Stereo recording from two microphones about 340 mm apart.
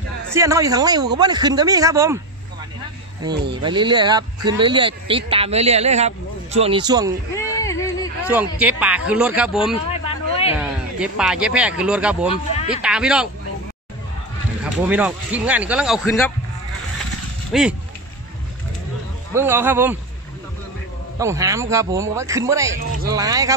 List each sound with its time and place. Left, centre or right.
0.3 s speech: centre
3.6 s speech: centre
7.3 s a sound: centre
8.3 s speech: centre
9.8 s a sound: centre
10.5 s speech: centre
14.6 s speech: centre
17.5 s speech: centre
19.3 s speech: centre
21.2 s speech: centre